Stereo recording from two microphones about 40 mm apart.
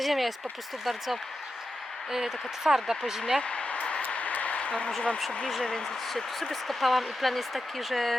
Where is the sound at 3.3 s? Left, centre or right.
Left.